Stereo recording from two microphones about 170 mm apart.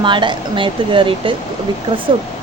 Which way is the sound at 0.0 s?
30° right (ahead or behind).